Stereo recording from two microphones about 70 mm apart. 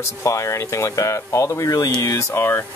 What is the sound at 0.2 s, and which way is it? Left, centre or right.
Speech, left.